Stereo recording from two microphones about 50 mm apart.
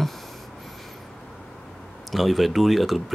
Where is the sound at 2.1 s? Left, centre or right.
Centre.